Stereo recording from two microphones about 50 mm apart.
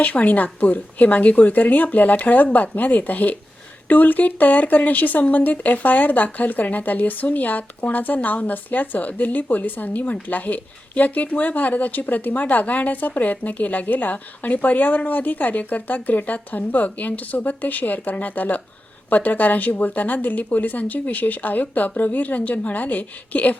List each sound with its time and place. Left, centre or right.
0.0 s speech: left